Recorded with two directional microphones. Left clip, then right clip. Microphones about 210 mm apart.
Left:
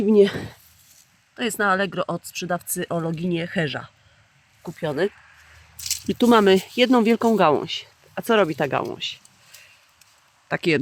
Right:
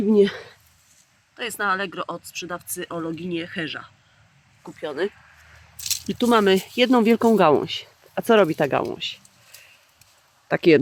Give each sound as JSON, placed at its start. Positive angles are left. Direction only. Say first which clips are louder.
{"t": 0.0, "sound": "speech", "louder": "left 2 dB", "side_deg": 10}
{"t": 10.5, "sound": "speech", "louder": "right 5 dB", "side_deg": -25}